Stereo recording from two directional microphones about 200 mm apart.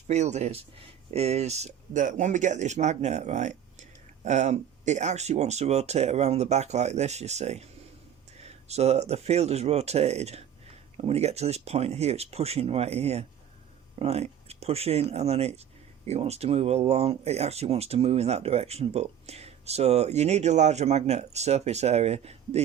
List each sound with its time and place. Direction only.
0.1 s speech: 35° right (ahead or behind)